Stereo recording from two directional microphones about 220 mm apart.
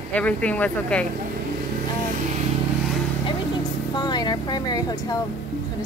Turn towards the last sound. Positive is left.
turn(degrees=15)  # may be behind; listen again after turning